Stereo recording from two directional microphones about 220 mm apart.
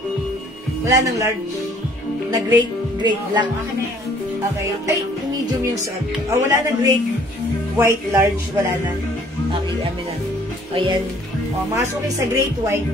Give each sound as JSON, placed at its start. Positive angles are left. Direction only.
{"t": 0.8, "sound": "speech", "side_deg": -15}
{"t": 2.3, "sound": "speech", "side_deg": -20}
{"t": 6.3, "sound": "speech", "side_deg": -15}
{"t": 10.7, "sound": "speech", "side_deg": -25}